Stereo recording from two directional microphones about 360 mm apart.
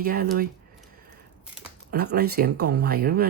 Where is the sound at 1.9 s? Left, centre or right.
Right.